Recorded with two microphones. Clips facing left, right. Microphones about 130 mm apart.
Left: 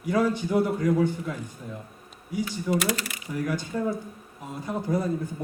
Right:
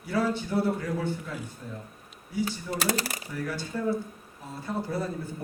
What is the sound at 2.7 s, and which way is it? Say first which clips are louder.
Speech: left 1 dB; 35° right (ahead or behind).